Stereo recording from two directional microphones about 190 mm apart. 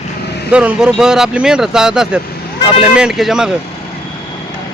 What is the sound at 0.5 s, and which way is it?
Speech, 5° right (ahead or behind).